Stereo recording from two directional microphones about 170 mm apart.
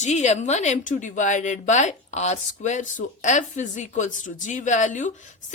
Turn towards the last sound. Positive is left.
turn(degrees=45)  # may be behind; listen again after turning